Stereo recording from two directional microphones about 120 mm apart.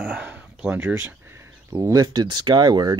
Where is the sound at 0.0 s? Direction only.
10° right (ahead or behind).